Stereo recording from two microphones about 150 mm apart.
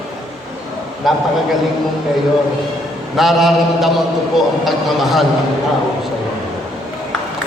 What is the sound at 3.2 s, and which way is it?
A man's voice, centre (ahead or behind).